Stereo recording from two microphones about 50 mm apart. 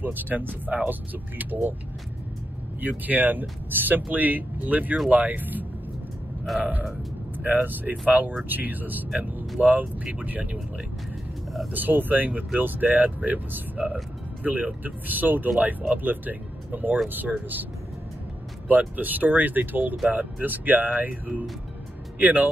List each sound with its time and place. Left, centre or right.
0.0 s speech: right
2.8 s speech: right
11.7 s speech: right
18.7 s speech: right